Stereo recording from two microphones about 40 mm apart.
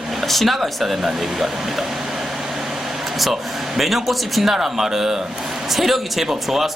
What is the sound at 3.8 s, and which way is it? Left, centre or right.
Speech, centre.